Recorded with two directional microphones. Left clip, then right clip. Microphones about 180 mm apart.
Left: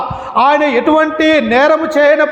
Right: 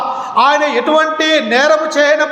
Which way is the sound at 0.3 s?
50° left (ahead or behind).